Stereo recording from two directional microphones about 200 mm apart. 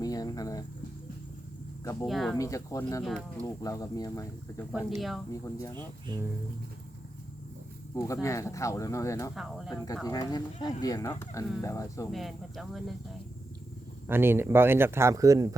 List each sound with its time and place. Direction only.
0.0 s a sound: 20° left (ahead or behind)
1.8 s speech: 15° left (ahead or behind)
2.0 s speech: centre (ahead or behind)
2.4 s speech: 15° left (ahead or behind)
3.0 s speech: centre (ahead or behind)
3.4 s speech: 15° left (ahead or behind)
4.7 s speech: centre (ahead or behind)
5.3 s speech: 15° left (ahead or behind)
6.1 s speech: 20° right (ahead or behind)
7.9 s speech: 15° left (ahead or behind)
9.3 s speech: centre (ahead or behind)
9.8 s speech: 15° left (ahead or behind)
12.1 s speech: centre (ahead or behind)
14.1 s speech: 10° right (ahead or behind)